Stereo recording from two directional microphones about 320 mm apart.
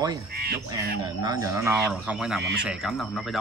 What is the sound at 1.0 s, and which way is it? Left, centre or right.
Speech, centre.